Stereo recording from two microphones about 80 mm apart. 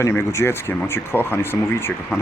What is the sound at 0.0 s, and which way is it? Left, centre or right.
Speech, left.